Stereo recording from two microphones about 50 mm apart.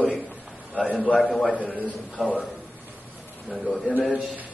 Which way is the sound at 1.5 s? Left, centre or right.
Left.